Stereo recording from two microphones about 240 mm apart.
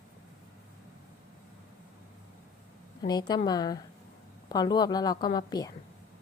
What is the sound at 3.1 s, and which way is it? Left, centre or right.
A woman's voice, centre.